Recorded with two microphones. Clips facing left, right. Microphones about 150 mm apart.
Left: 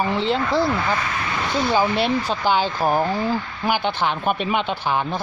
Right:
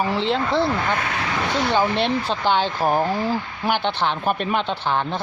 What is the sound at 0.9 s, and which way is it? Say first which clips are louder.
Speech: even; 75° right (ahead or behind).